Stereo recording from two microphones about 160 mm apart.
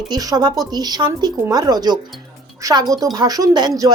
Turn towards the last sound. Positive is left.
turn(degrees=-25)  # may be behind; listen again after turning